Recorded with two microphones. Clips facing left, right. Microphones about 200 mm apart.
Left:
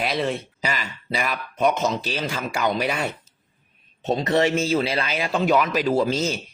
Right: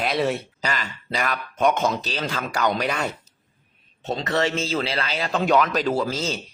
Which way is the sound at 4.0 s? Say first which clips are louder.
Left 3 dB; 20° left (ahead or behind).